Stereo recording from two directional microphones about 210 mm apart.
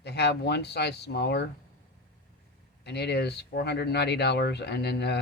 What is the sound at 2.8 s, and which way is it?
Speech, 50° left (ahead or behind).